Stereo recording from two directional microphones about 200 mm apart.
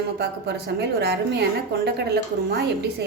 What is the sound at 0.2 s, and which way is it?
A woman's voice, 55° right (ahead or behind).